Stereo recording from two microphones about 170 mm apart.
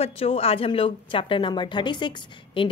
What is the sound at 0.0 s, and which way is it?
Speech, 35° left (ahead or behind).